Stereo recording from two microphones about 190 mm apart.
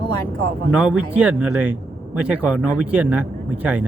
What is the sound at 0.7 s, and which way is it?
Speech, 5° right (ahead or behind).